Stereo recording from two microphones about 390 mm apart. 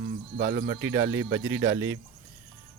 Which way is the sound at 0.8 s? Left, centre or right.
Centre.